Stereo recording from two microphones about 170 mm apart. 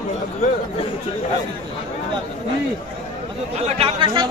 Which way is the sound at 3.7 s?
35° right (ahead or behind).